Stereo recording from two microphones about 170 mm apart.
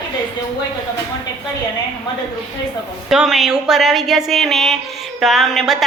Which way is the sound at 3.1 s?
Centre (ahead or behind).